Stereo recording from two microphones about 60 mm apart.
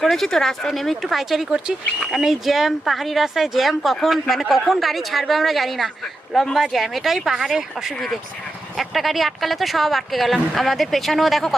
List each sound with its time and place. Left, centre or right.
0.0 s speech: centre